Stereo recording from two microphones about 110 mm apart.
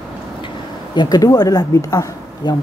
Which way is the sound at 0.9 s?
40° left (ahead or behind).